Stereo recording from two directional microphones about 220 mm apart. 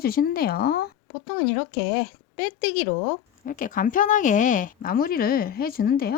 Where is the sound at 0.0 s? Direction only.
45° left (ahead or behind).